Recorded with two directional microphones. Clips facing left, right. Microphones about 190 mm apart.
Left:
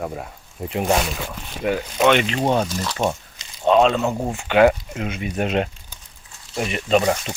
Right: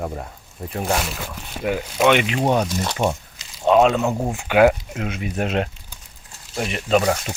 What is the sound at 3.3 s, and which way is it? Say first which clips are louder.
Speech: even; 5° right (ahead or behind).